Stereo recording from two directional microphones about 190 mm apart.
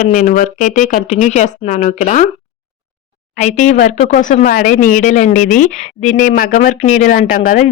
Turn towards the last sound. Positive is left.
turn(degrees=50)  # may be behind; listen again after turning